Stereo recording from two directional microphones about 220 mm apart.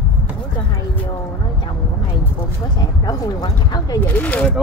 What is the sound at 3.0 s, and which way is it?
Speech, 15° left (ahead or behind).